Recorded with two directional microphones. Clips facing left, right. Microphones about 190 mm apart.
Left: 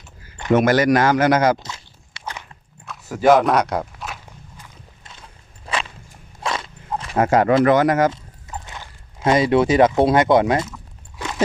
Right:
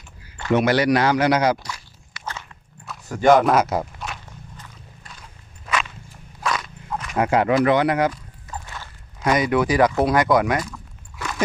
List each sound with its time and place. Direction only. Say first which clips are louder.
0.5 s speech: left 3 dB; 45° left (ahead or behind)
1.5 s a sound: even; 25° left (ahead or behind)
2.8 s walk: left 1 dB; centre (ahead or behind)
5.7 s walk: right 1 dB; 30° left (ahead or behind)
6.4 s dog: even; 25° left (ahead or behind)
7.2 s speech: left 3 dB; 45° left (ahead or behind)
8.1 s speech: left 1 dB; 20° left (ahead or behind)
11.2 s crunch: left 3 dB; 20° left (ahead or behind)